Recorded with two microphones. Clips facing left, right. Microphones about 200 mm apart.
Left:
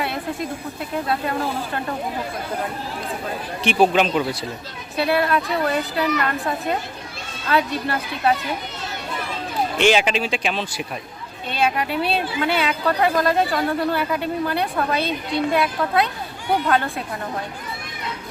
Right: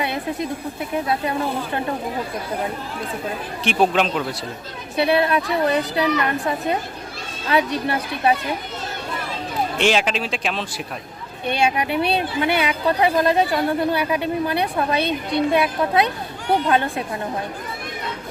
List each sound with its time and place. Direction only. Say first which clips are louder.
3.6 s a man's voice: left 2 dB; centre (ahead or behind)
4.9 s a woman's voice: right 2 dB; 20° right (ahead or behind)
9.7 s a man's voice: left 2 dB; centre (ahead or behind)
11.4 s a woman's voice: right 2 dB; 15° right (ahead or behind)